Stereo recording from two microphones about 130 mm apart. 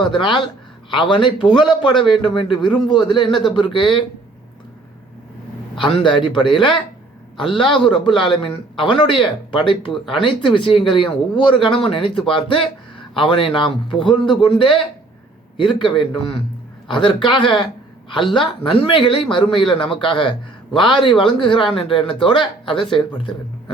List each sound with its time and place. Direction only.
0.2 s a man's voice: 40° left (ahead or behind)
5.8 s a man's voice: 40° left (ahead or behind)